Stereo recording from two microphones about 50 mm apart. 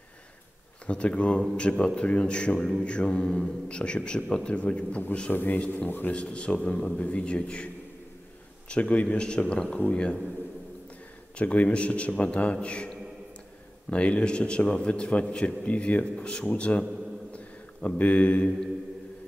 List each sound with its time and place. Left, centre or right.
0.8 s a man's voice: left
5.3 s speech: left
5.9 s a man's voice: left
6.1 s a man's voice: left
11.3 s a man's voice: left
17.8 s a man's voice: left